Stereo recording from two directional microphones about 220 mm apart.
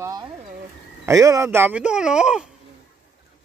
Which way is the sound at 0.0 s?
15° right (ahead or behind).